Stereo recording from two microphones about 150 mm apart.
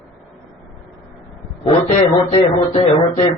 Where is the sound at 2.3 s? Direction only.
40° left (ahead or behind).